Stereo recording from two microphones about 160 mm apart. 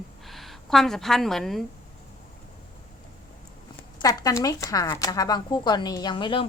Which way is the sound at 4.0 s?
20° left (ahead or behind).